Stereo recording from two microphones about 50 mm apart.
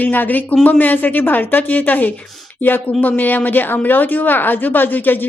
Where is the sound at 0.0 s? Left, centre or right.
Left.